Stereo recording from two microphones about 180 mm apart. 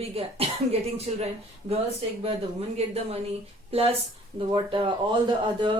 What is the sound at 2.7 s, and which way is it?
Speech, 35° right (ahead or behind).